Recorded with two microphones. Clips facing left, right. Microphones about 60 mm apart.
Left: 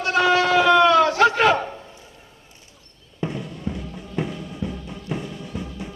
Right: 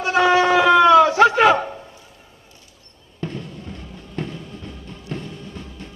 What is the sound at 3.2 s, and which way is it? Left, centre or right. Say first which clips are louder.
Music: left 2 dB; centre.